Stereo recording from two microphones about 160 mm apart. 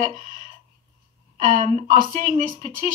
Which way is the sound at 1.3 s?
50° right (ahead or behind).